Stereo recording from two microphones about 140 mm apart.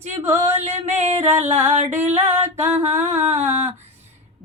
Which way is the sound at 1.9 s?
15° right (ahead or behind).